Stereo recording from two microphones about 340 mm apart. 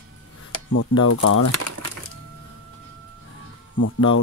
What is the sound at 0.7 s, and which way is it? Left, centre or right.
Speech, left.